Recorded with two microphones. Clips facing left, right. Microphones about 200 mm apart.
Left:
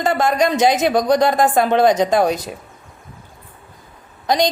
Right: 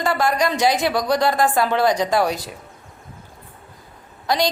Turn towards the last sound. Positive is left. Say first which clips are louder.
# left 3 dB
turn(degrees=20)  # may be behind; listen again after turning